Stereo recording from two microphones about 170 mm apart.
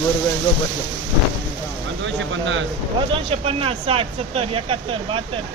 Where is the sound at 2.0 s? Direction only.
90° right.